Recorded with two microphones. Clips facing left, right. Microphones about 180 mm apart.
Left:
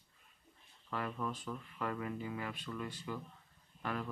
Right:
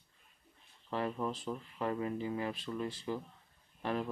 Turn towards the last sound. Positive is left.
turn(degrees=-25)  # may be behind; listen again after turning